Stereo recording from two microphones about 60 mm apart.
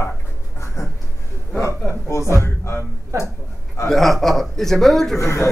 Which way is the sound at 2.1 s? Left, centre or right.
Left.